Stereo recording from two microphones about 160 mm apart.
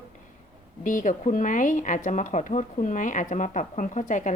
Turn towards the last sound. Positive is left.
turn(degrees=50)  # may be behind; listen again after turning